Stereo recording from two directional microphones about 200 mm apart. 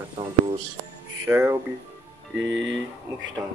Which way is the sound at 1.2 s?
10° right (ahead or behind).